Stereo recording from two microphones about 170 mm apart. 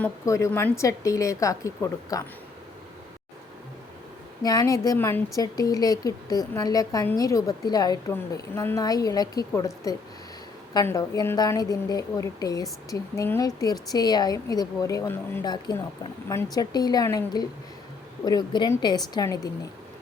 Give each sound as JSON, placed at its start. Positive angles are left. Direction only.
{"t": 0.0, "sound": "a woman's voice", "side_deg": 20}
{"t": 4.4, "sound": "a woman's voice", "side_deg": 20}